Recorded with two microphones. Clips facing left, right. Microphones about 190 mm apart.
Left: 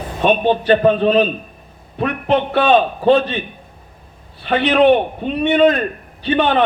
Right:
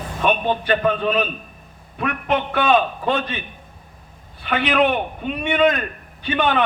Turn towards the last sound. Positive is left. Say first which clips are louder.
# left 4 dB
turn(degrees=35)  # may be behind; listen again after turning